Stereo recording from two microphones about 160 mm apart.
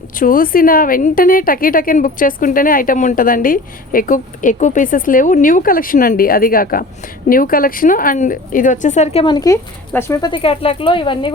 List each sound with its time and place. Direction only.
0.2 s a woman's voice: 60° left (ahead or behind)
9.2 s speech: 25° left (ahead or behind)
10.2 s speech: 35° left (ahead or behind)